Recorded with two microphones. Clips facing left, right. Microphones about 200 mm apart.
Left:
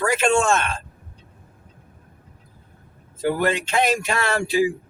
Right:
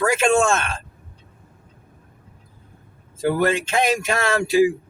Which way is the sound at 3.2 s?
45° right (ahead or behind).